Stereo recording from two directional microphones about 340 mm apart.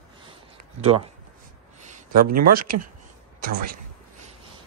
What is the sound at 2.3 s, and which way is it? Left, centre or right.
Speech, right.